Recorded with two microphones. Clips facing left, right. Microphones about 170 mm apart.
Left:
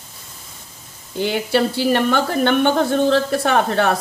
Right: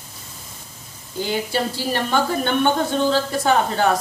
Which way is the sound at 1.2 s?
70° left (ahead or behind).